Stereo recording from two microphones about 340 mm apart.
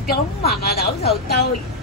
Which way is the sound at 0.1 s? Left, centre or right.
Left.